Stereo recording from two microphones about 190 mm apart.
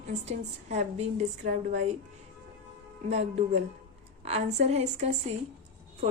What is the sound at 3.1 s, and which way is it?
A woman's voice, 35° right (ahead or behind).